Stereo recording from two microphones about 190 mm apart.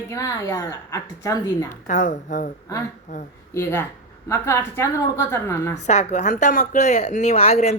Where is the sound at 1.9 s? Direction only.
40° left (ahead or behind).